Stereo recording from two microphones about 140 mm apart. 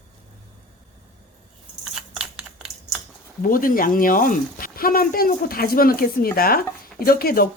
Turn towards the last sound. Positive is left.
turn(degrees=90)